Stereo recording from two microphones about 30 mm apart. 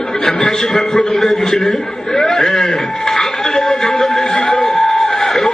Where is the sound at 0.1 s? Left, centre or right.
Centre.